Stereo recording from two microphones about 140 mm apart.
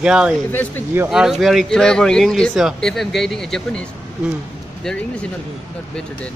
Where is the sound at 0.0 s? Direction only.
5° right (ahead or behind).